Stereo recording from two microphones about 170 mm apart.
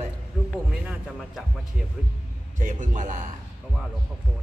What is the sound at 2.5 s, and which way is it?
Speech, 45° right (ahead or behind).